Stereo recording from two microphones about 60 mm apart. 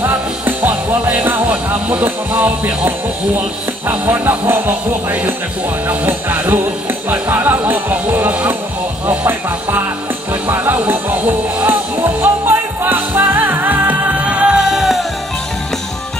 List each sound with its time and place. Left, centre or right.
0.0 s music: right
3.3 s speech: right
5.9 s speech: right
10.4 s music: right; by 15.0 s centre